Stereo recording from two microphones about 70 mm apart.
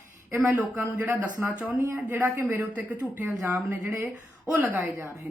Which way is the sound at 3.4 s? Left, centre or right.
Right.